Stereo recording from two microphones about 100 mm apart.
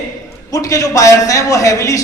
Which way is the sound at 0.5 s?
35° left (ahead or behind).